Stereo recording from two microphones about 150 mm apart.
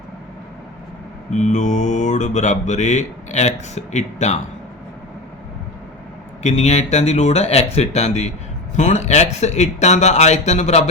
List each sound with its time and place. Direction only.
1.3 s mantra: 50° left (ahead or behind)
6.4 s mantra: 45° left (ahead or behind)